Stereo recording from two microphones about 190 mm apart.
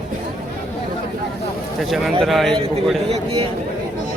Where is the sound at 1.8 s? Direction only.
Centre (ahead or behind).